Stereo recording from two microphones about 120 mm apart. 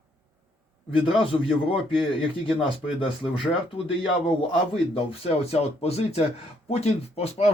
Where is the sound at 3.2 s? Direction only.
50° left (ahead or behind).